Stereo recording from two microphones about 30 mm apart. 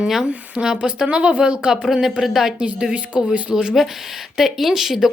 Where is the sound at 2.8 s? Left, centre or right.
Right.